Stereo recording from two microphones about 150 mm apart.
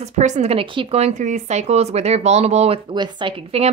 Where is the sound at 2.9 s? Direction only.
30° right (ahead or behind).